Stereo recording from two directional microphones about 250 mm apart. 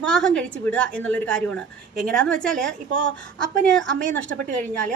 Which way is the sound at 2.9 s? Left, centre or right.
Right.